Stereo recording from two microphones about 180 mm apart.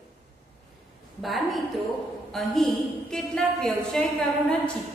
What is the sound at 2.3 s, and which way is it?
A woman's voice, centre (ahead or behind).